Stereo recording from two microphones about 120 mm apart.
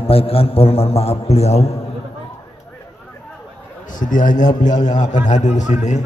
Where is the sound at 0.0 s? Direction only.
50° left (ahead or behind).